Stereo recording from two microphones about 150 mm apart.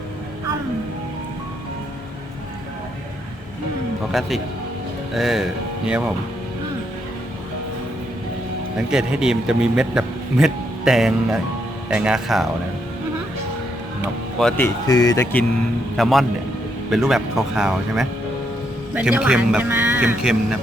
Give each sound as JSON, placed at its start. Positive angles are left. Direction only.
{"t": 4.1, "sound": "a man's voice", "side_deg": 0}
{"t": 8.9, "sound": "a man's voice", "side_deg": -5}
{"t": 14.3, "sound": "a man's voice", "side_deg": 5}
{"t": 14.8, "sound": "speech", "side_deg": 25}
{"t": 16.0, "sound": "a man's voice", "side_deg": 0}